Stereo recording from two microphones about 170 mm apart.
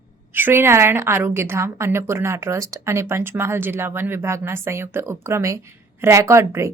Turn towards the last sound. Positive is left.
turn(degrees=-15)  # may be behind; listen again after turning